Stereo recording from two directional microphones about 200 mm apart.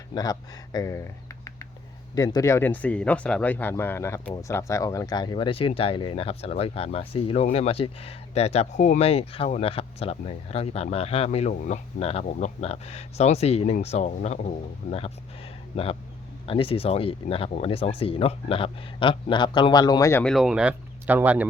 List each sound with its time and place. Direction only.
0.1 s speech: 20° left (ahead or behind)
20.3 s speech: 5° right (ahead or behind)